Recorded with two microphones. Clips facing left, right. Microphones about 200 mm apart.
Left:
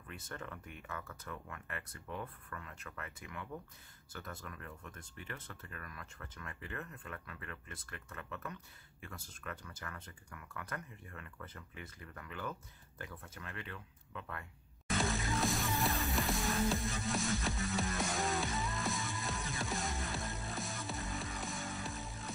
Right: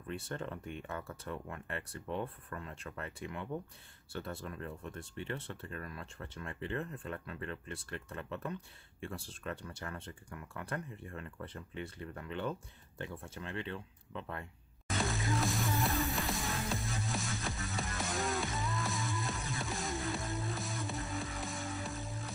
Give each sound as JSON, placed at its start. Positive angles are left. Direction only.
{"t": 0.1, "sound": "speech", "side_deg": -30}
{"t": 14.9, "sound": "music", "side_deg": 0}